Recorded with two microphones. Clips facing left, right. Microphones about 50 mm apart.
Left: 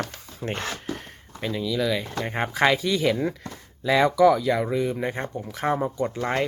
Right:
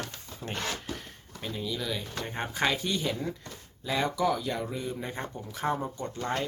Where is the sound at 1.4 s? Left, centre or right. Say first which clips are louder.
Left 9 dB; left.